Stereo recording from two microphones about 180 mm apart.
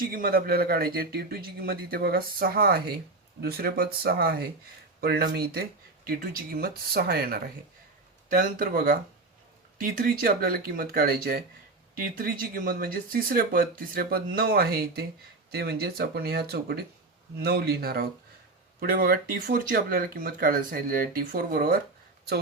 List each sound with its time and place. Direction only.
0.0 s speech: 55° right (ahead or behind)